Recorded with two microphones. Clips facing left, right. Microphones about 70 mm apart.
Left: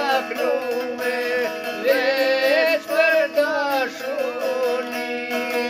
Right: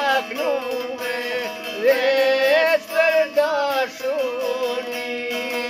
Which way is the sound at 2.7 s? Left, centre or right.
Right.